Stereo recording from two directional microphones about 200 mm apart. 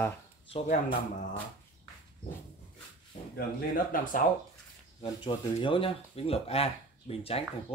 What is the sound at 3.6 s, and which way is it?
Speech, 40° left (ahead or behind).